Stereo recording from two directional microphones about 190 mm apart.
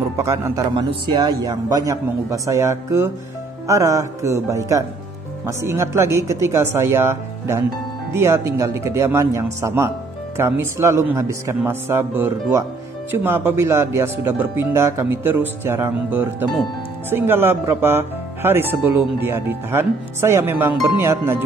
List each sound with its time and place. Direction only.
0.2 s speech: 15° right (ahead or behind)
0.7 s a man's voice: 25° right (ahead or behind)